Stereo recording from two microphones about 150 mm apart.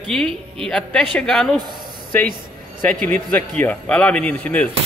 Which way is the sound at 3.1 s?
10° left (ahead or behind).